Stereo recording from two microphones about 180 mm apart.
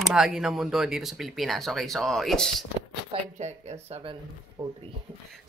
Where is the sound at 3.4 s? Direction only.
35° right (ahead or behind).